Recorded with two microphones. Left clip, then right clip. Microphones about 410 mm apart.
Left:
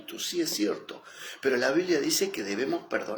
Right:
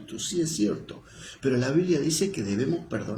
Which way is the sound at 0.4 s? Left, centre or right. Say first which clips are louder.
Right 1 dB; right.